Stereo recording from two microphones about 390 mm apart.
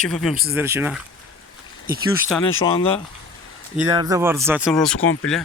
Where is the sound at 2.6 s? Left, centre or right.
Centre.